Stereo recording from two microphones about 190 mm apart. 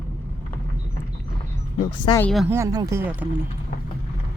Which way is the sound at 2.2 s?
Centre (ahead or behind).